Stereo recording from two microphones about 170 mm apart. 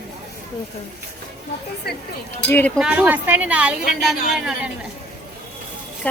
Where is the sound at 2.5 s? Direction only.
10° left (ahead or behind).